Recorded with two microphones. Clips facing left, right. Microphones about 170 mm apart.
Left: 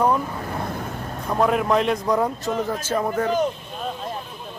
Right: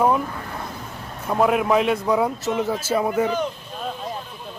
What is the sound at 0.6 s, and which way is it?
Vehicle, 55° left (ahead or behind).